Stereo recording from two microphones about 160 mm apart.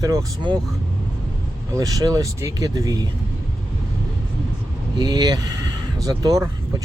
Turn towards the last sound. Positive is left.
turn(degrees=-20)  # may be behind; listen again after turning